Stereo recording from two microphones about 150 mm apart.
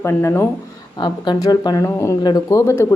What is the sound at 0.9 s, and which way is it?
A woman's voice, 30° left (ahead or behind).